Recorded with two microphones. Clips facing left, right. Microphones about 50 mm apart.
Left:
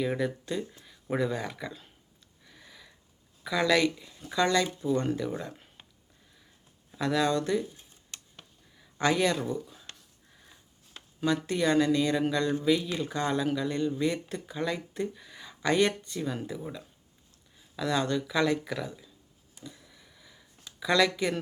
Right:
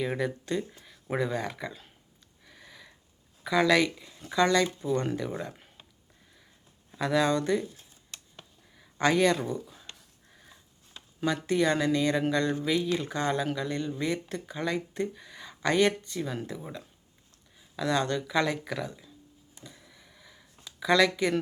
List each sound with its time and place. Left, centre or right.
0.0 s speech: centre
0.3 s speech: centre
2.4 s a sound: centre
3.4 s speech: centre
6.9 s speech: centre
8.7 s a sound: centre
11.2 s speech: centre
17.7 s speech: centre
19.8 s a sound: centre